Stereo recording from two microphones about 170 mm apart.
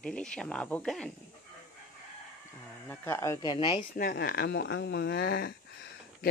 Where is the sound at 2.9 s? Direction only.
15° left (ahead or behind).